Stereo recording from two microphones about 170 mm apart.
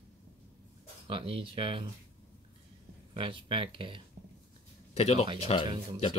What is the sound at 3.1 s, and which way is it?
Speech, 30° right (ahead or behind).